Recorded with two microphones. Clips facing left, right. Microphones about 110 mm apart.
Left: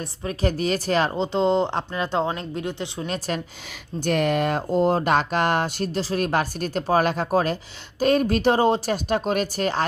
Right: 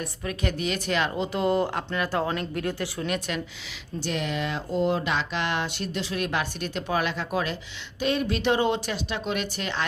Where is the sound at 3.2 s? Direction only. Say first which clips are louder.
Left 3 dB; 45° left (ahead or behind).